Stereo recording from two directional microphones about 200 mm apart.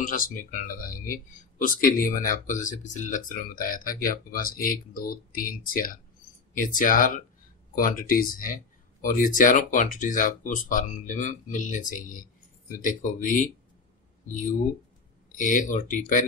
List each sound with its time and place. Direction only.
0.0 s speech: 40° left (ahead or behind)
15.3 s speech: 40° left (ahead or behind)